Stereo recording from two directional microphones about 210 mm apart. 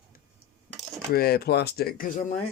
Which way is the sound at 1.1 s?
50° left (ahead or behind).